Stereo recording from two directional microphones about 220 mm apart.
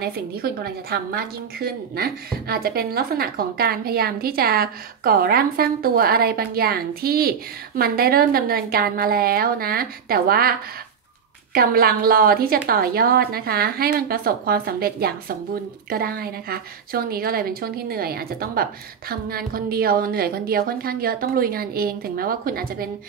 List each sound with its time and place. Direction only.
0.0 s a woman's voice: 45° right (ahead or behind)
11.5 s a woman's voice: 40° right (ahead or behind)